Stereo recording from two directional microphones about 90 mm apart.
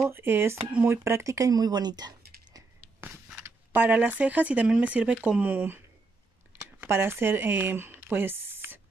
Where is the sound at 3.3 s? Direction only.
20° right (ahead or behind).